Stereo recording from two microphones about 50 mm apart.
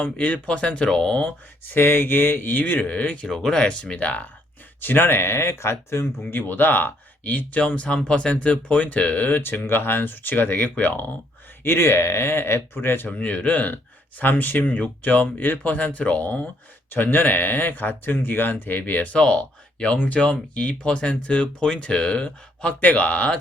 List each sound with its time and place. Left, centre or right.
0.0 s speech: left
1.6 s speech: left
3.2 s speech: centre; by 4.3 s left
4.8 s speech: left
9.4 s speech: left
11.6 s speech: left
13.1 s speech: left
16.9 s speech: left